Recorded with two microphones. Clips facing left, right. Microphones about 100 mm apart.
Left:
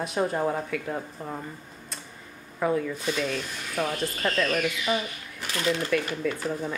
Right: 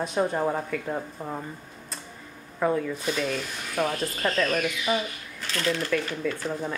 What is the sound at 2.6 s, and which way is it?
Speech, centre (ahead or behind).